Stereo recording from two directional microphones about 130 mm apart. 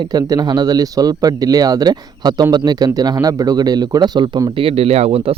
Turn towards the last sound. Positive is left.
turn(degrees=-50)  # may be behind; listen again after turning